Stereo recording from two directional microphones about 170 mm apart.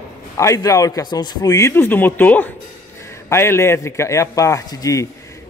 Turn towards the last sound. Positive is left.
turn(degrees=20)  # may be behind; listen again after turning